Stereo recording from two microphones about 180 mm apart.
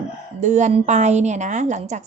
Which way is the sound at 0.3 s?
40° right (ahead or behind).